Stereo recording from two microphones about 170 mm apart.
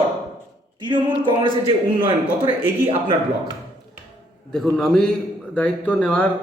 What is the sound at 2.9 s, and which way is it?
Speech, 30° right (ahead or behind).